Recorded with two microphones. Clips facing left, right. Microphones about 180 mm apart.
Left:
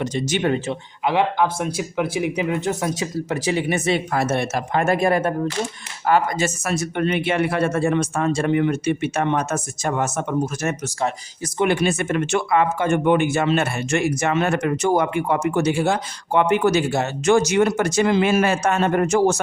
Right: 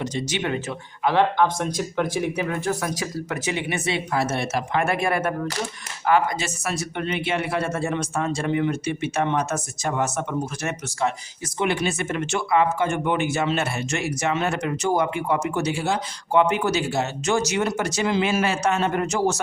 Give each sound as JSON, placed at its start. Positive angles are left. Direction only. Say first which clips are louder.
{"t": 0.0, "sound": "speech", "louder": "left 5 dB", "side_deg": 55}
{"t": 1.0, "sound": "speech", "louder": "even", "side_deg": 10}